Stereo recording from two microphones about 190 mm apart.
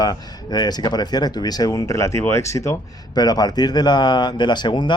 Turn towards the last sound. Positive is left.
turn(degrees=25)  # may be behind; listen again after turning